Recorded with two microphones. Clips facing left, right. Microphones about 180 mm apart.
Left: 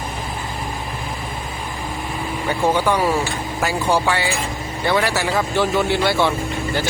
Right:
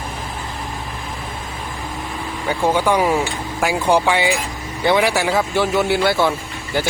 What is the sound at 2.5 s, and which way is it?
Speech, 10° right (ahead or behind).